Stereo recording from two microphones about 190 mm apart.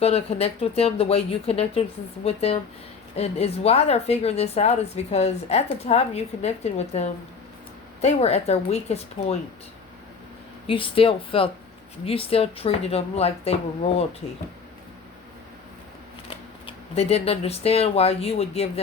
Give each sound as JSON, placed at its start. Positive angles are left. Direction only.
{"t": 0.0, "sound": "a woman's voice", "side_deg": 30}
{"t": 10.7, "sound": "a woman's voice", "side_deg": 30}
{"t": 16.3, "sound": "speech", "side_deg": 30}